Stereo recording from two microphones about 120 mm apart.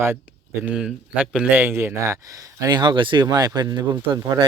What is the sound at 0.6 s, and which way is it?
Speech, 5° right (ahead or behind).